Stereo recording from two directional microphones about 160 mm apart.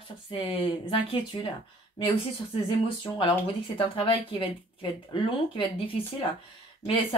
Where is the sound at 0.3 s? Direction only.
35° left (ahead or behind).